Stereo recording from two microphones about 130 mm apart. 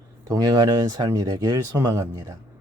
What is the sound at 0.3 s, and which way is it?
Speech, 30° right (ahead or behind).